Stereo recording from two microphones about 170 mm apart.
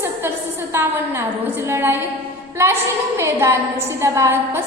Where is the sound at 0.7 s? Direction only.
15° right (ahead or behind).